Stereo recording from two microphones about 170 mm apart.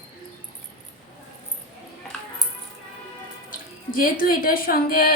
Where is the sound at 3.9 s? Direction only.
60° left (ahead or behind).